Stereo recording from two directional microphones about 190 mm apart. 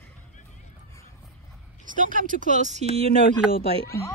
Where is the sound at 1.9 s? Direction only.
45° right (ahead or behind).